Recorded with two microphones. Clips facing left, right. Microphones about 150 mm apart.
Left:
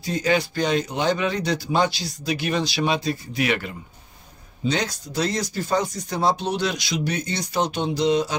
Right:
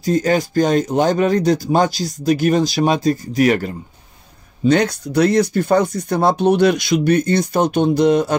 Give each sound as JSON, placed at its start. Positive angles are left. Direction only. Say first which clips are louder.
{"t": 0.0, "sound": "speech", "louder": "right 6 dB", "side_deg": -45}
{"t": 4.6, "sound": "speech", "louder": "right 10 dB", "side_deg": -60}